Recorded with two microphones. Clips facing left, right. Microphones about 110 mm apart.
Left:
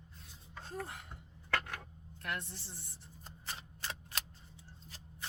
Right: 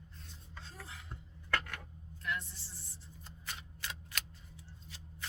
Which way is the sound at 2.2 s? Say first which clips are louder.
Right 1 dB; 60° left (ahead or behind).